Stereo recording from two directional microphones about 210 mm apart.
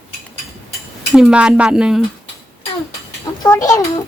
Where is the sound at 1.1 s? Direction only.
5° right (ahead or behind).